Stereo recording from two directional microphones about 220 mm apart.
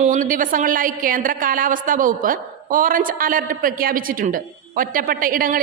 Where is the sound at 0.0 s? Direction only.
35° right (ahead or behind).